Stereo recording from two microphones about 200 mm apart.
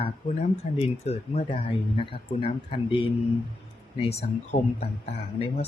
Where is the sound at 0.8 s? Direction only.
30° left (ahead or behind).